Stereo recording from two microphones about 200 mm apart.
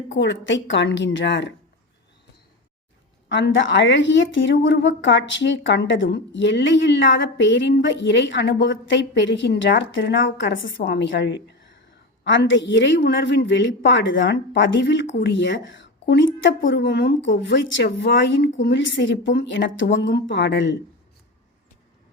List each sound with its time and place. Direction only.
0.1 s a woman's voice: 65° left (ahead or behind)
3.2 s a woman's voice: 65° left (ahead or behind)